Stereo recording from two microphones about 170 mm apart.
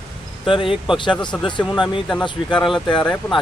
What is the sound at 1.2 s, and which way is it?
Speech, 25° left (ahead or behind).